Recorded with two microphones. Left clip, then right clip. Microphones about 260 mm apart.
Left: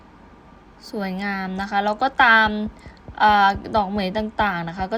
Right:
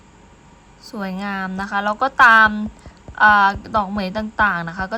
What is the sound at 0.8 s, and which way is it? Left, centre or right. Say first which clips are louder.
A woman's voice: even; centre.